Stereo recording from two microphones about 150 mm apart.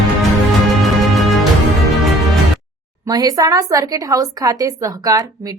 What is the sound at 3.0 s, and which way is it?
Speech, 25° right (ahead or behind).